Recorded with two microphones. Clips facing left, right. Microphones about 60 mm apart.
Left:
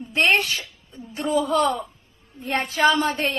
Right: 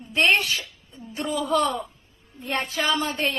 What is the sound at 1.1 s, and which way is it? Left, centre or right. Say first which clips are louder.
A woman's voice: left 3 dB; left.